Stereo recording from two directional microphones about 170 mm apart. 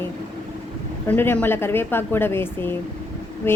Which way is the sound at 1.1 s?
10° left (ahead or behind).